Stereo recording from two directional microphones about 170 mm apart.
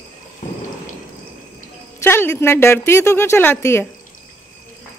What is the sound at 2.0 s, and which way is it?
Speech, 15° left (ahead or behind).